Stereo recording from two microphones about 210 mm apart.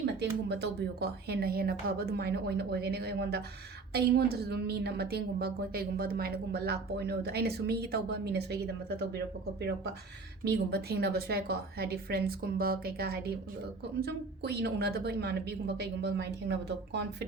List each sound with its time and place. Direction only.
0.0 s a woman's voice: 55° right (ahead or behind)